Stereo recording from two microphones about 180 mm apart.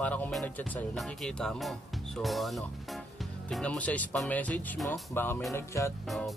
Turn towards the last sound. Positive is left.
turn(degrees=0)  # may be behind; listen again after turning